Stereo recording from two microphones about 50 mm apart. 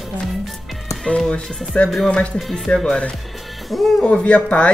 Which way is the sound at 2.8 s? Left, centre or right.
Centre.